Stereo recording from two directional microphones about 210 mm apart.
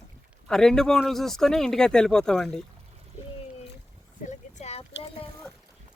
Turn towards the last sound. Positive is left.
turn(degrees=30)  # may be behind; listen again after turning